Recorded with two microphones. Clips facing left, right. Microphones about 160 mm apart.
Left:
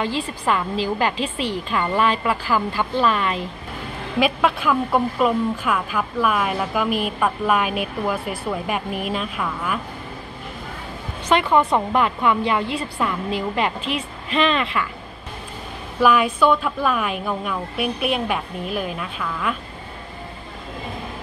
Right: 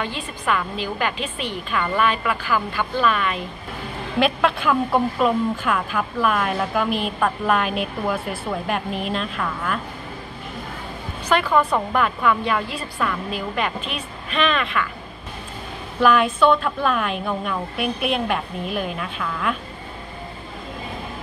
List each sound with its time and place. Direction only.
0.0 s a woman's voice: 30° left (ahead or behind)
4.2 s a woman's voice: 5° left (ahead or behind)
11.2 s a woman's voice: 25° left (ahead or behind)
16.0 s a woman's voice: 5° left (ahead or behind)